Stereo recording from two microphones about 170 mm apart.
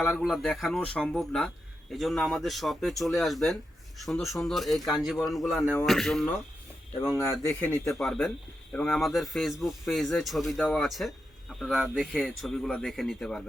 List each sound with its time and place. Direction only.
0.0 s a man's voice: centre (ahead or behind)
7.4 s speech: 15° left (ahead or behind)
7.9 s a man's voice: 5° left (ahead or behind)